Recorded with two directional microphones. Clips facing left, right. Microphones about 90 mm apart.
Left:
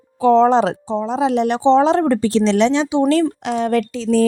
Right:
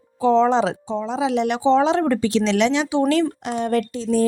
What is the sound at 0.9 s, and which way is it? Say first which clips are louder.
Speech: left 4 dB; 35° left (ahead or behind).